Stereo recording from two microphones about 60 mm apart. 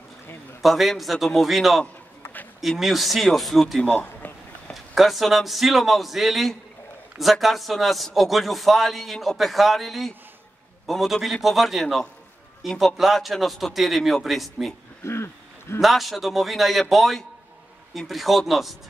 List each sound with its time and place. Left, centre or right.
0.6 s a man's voice: centre
2.8 s a man's voice: centre
3.8 s a sound: left
4.9 s a man's voice: centre
15.0 s a sound: left
15.8 s a man's voice: centre